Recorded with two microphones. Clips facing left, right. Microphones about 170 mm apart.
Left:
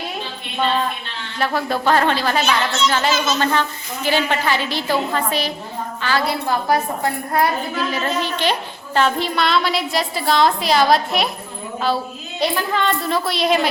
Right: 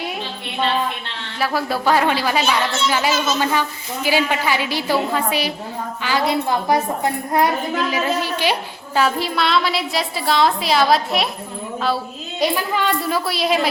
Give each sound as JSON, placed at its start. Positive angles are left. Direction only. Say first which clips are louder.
{"t": 1.4, "sound": "a woman's voice", "louder": "even", "side_deg": -5}
{"t": 12.4, "sound": "a woman's voice", "louder": "even", "side_deg": -10}